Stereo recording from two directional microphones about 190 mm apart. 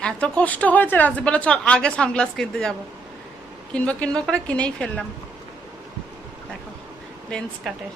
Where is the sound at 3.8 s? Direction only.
5° left (ahead or behind).